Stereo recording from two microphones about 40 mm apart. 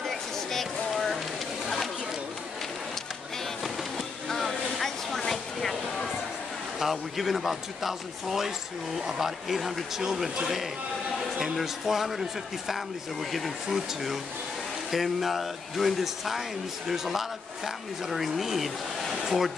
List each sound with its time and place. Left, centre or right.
0.0 s a sound: centre
4.3 s vehicle: centre
6.8 s a man's voice: centre